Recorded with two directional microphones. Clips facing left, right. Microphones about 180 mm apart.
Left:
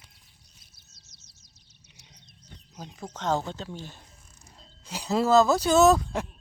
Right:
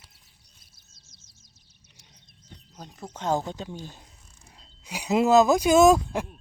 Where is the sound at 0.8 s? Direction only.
50° right (ahead or behind).